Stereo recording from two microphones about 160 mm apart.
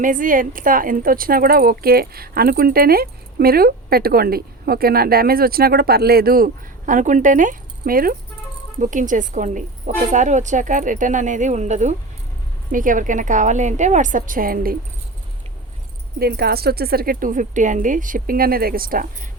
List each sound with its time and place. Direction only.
0.0 s a woman's voice: 55° right (ahead or behind)
16.1 s a woman's voice: 75° right (ahead or behind)